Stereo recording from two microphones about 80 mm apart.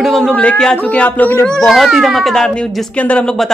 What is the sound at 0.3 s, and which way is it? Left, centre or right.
Speech, centre.